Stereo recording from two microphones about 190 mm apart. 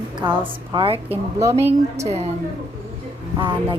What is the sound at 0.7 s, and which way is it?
Speech, 30° right (ahead or behind).